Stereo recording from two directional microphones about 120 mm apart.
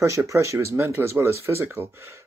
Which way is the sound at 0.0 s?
25° right (ahead or behind).